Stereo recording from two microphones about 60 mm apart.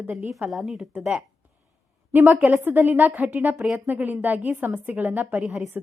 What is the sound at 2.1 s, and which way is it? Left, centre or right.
A woman's voice, right.